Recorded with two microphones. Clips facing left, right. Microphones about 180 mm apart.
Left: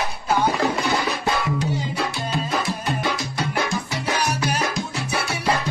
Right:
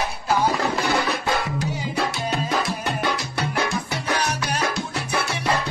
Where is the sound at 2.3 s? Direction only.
65° right (ahead or behind).